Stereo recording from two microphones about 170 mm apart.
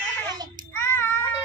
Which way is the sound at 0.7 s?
10° left (ahead or behind).